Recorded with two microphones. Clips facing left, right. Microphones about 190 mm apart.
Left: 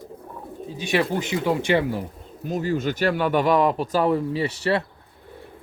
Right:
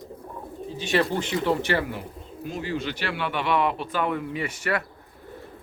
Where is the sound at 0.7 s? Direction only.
10° left (ahead or behind).